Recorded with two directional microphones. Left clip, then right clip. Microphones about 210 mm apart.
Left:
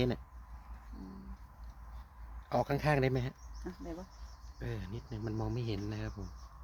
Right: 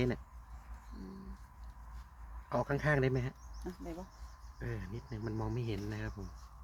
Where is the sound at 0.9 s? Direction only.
55° right (ahead or behind).